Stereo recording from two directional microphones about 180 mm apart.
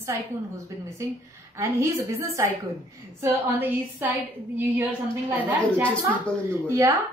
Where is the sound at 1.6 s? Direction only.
15° right (ahead or behind).